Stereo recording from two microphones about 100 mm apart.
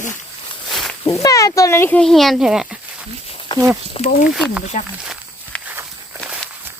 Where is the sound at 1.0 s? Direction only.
35° left (ahead or behind).